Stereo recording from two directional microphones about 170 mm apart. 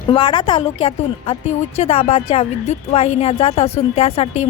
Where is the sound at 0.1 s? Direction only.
30° left (ahead or behind).